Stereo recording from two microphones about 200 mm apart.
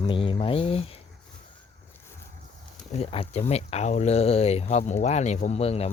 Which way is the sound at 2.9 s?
30° left (ahead or behind).